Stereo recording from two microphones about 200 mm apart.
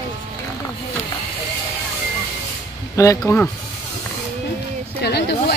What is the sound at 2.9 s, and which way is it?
Speech, 15° left (ahead or behind).